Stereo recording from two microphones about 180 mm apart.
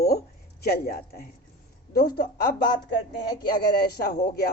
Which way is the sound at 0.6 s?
60° left (ahead or behind).